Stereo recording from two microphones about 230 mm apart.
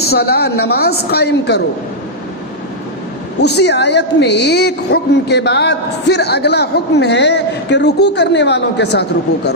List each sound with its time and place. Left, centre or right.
0.1 s a woman's voice: left
3.4 s a woman's voice: left